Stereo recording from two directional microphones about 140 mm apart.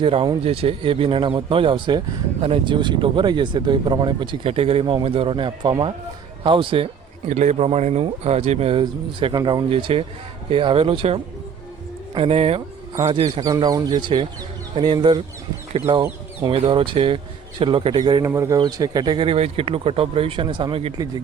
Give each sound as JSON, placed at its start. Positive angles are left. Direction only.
{"t": 0.0, "sound": "speech", "side_deg": -40}
{"t": 4.4, "sound": "speech", "side_deg": -45}
{"t": 7.3, "sound": "speech", "side_deg": -55}
{"t": 8.8, "sound": "speech", "side_deg": -30}
{"t": 13.4, "sound": "speech", "side_deg": -25}
{"t": 16.5, "sound": "speech", "side_deg": -40}